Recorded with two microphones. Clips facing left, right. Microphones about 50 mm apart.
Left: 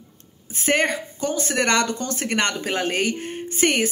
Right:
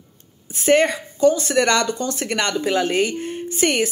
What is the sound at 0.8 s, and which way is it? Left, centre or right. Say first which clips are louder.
Speech: right 7 dB; left.